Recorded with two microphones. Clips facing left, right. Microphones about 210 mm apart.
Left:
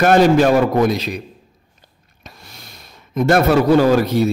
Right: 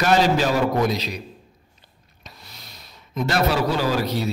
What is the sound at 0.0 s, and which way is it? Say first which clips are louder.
A man's voice: left 7 dB; 55° left (ahead or behind).